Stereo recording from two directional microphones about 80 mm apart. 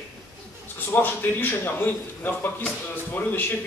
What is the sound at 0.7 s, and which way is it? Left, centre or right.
A man's voice, left.